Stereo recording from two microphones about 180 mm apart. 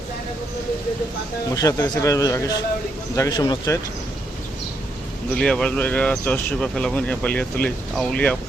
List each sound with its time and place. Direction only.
1.5 s speech: 15° left (ahead or behind)
5.4 s speech: 5° left (ahead or behind)